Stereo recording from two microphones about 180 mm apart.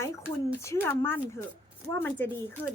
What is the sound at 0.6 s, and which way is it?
A woman's voice, 15° left (ahead or behind).